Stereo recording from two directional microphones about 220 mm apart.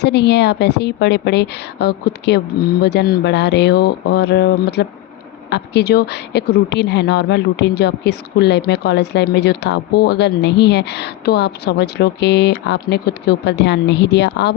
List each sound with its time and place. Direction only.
0.0 s a woman's voice: 50° left (ahead or behind)